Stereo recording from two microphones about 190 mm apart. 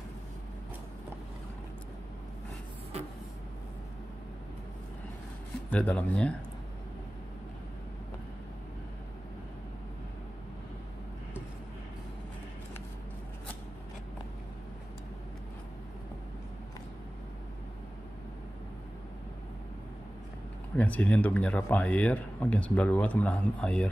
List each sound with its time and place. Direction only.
5.7 s speech: 5° left (ahead or behind)
20.7 s speech: 10° left (ahead or behind)